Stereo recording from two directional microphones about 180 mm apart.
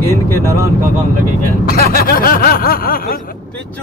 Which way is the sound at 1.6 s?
55° left (ahead or behind).